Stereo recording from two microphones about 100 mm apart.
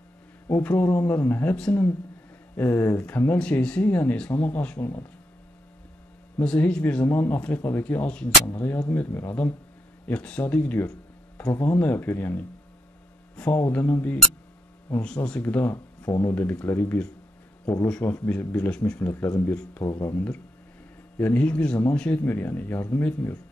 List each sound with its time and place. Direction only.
0.5 s speech: 20° left (ahead or behind)
3.3 s speech: 10° left (ahead or behind); by 5.0 s 25° left (ahead or behind)
6.4 s speech: 10° left (ahead or behind)
10.0 s speech: 15° left (ahead or behind)
11.4 s speech: 30° left (ahead or behind)
13.4 s speech: 20° left (ahead or behind)
18.0 s speech: 20° left (ahead or behind)
21.2 s speech: 20° left (ahead or behind)